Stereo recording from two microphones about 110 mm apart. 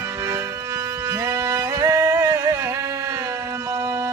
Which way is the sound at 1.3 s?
20° right (ahead or behind).